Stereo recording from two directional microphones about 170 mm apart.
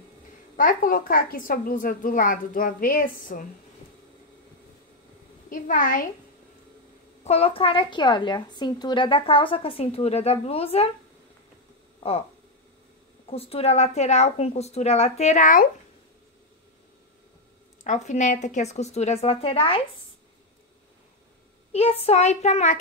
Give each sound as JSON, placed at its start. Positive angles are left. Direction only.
{"t": 0.6, "sound": "a woman's voice", "side_deg": 55}
{"t": 5.5, "sound": "a woman's voice", "side_deg": 55}
{"t": 7.2, "sound": "a woman's voice", "side_deg": 35}
{"t": 13.3, "sound": "a woman's voice", "side_deg": 35}
{"t": 17.8, "sound": "a woman's voice", "side_deg": 45}
{"t": 21.7, "sound": "a woman's voice", "side_deg": 40}